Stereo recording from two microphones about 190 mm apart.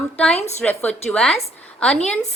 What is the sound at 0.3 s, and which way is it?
Speech, 35° left (ahead or behind).